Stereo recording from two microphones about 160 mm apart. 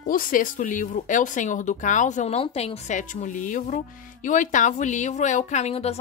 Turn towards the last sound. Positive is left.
turn(degrees=40)  # may be behind; listen again after turning